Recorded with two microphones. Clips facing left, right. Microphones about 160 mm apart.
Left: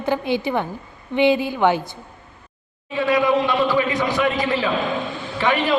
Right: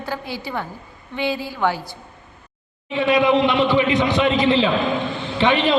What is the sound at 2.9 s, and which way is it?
A man's voice, 20° right (ahead or behind).